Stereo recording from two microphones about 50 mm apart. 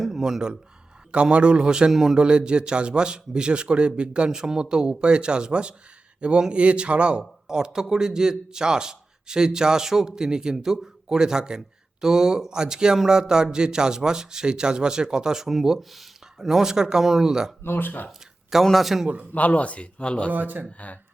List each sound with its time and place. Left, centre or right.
0.0 s a sound: centre
1.1 s a man's voice: right
1.9 s a man's voice: centre
2.2 s a man's voice: centre
7.2 s a man's voice: centre
17.6 s speech: left
18.6 s a man's voice: centre
19.3 s speech: left
20.3 s speech: right
20.7 s speech: left